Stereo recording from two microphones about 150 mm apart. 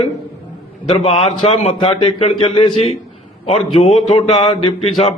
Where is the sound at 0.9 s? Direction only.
40° left (ahead or behind).